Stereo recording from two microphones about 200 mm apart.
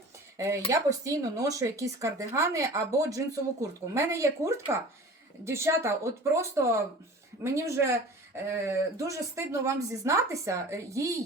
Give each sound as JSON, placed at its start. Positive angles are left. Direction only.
{"t": 0.3, "sound": "speech", "side_deg": -15}